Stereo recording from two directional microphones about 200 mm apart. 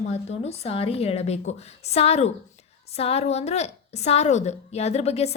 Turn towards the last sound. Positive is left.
turn(degrees=30)  # may be behind; listen again after turning